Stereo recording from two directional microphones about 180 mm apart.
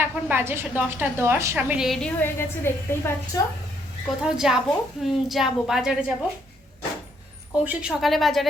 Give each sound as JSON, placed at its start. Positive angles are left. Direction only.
{"t": 0.0, "sound": "a woman's voice", "side_deg": -10}
{"t": 4.2, "sound": "a woman's voice", "side_deg": -5}
{"t": 7.6, "sound": "a woman's voice", "side_deg": -5}